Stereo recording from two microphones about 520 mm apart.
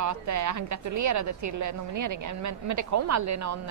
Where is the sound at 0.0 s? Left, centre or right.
Right.